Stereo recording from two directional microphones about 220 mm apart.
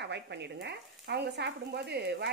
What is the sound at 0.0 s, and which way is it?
Speech, 50° right (ahead or behind).